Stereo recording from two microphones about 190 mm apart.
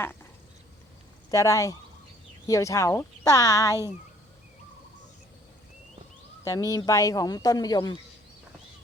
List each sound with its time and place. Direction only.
1.3 s speech: 15° left (ahead or behind)
6.4 s speech: 15° left (ahead or behind)